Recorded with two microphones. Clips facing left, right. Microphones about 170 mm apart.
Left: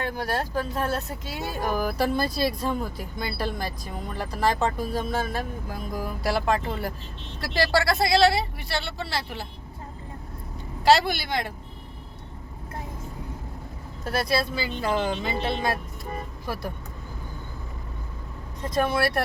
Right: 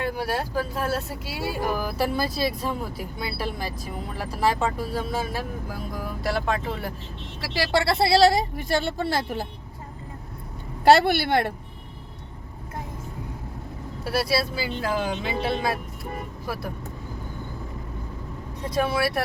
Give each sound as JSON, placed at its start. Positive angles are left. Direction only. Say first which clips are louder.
{"t": 0.0, "sound": "speech", "louder": "right 1 dB", "side_deg": -10}
{"t": 7.7, "sound": "speech", "louder": "right 3 dB", "side_deg": -25}
{"t": 10.8, "sound": "speech", "louder": "right 3 dB", "side_deg": -60}
{"t": 14.0, "sound": "speech", "louder": "right 1 dB", "side_deg": -5}
{"t": 18.7, "sound": "speech", "louder": "even", "side_deg": -5}